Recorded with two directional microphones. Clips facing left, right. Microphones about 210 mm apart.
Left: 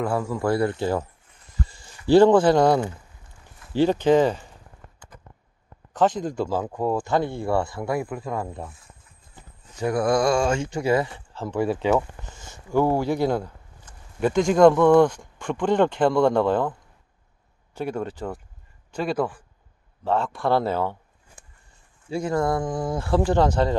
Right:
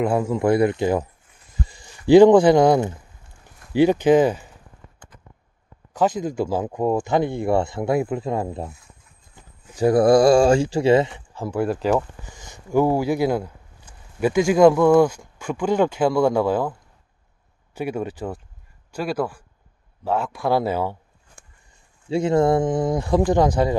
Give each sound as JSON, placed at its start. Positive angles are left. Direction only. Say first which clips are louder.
{"t": 0.0, "sound": "speech", "louder": "right 4 dB", "side_deg": -20}
{"t": 5.9, "sound": "speech", "louder": "right 1 dB", "side_deg": -10}
{"t": 9.8, "sound": "speech", "louder": "right 7 dB", "side_deg": -35}
{"t": 12.2, "sound": "speech", "louder": "right 1 dB", "side_deg": -15}
{"t": 17.7, "sound": "speech", "louder": "right 2 dB", "side_deg": -10}
{"t": 22.1, "sound": "speech", "louder": "right 6 dB", "side_deg": -25}